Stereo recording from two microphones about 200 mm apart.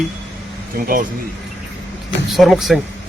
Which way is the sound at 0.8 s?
45° right (ahead or behind).